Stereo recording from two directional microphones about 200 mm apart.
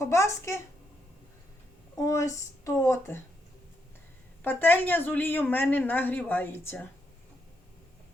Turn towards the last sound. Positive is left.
turn(degrees=10)  # may be behind; listen again after turning